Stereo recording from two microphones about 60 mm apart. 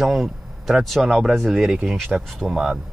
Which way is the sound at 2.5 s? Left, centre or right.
Centre.